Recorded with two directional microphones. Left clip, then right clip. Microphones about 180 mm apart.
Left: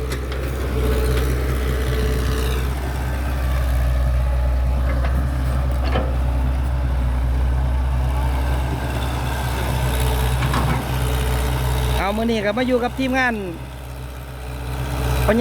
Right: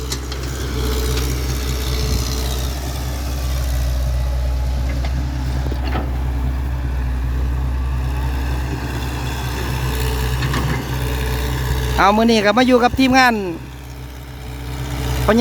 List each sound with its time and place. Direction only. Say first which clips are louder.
0.8 s vehicle: left 1 dB; 10° right (ahead or behind)
8.8 s vehicle: left 1 dB; centre (ahead or behind)
11.9 s speech: right 9 dB; 50° right (ahead or behind)
14.9 s vehicle: left 1 dB; 5° right (ahead or behind)